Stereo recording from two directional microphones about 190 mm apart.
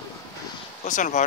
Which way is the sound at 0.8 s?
40° left (ahead or behind).